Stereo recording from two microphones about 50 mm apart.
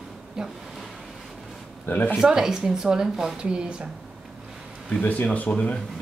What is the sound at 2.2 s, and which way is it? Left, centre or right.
A woman's voice, centre.